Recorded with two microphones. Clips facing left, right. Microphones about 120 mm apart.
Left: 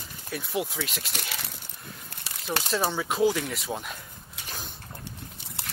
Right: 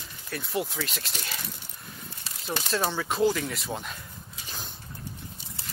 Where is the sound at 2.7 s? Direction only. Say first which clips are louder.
Even; 5° left (ahead or behind).